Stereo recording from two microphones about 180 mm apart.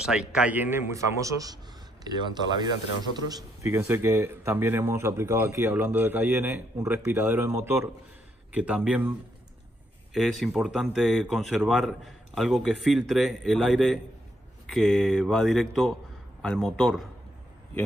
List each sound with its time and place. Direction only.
0.0 s a man's voice: 5° right (ahead or behind)
10.4 s a man's voice: centre (ahead or behind)